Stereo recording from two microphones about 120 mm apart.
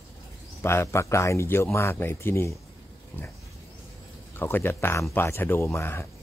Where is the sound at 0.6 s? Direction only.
20° left (ahead or behind).